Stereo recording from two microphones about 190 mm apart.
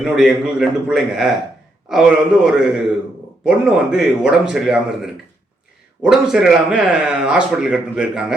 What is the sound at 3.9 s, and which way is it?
Speech, 5° right (ahead or behind).